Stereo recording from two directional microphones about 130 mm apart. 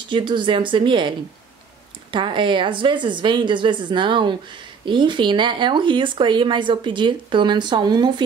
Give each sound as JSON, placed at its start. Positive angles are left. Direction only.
{"t": 0.1, "sound": "speech", "side_deg": -40}